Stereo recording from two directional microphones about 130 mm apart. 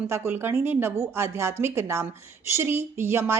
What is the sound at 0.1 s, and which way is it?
A woman's voice, 20° right (ahead or behind).